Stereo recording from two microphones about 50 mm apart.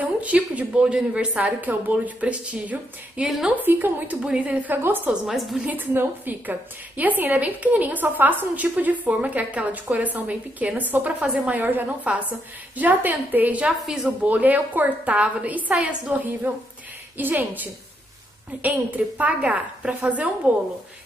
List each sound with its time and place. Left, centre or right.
0.0 s a woman's voice: right
1.4 s a woman's voice: right
3.6 s a woman's voice: right
4.2 s a woman's voice: right
5.2 s a woman's voice: centre
5.7 s a woman's voice: right
11.5 s a woman's voice: right
13.7 s a woman's voice: centre
14.2 s a woman's voice: right